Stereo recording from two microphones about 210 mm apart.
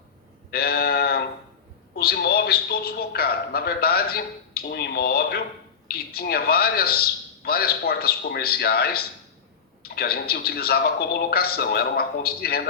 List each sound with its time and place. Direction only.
0.5 s sheep: 45° left (ahead or behind)
2.0 s a man's voice: 50° left (ahead or behind)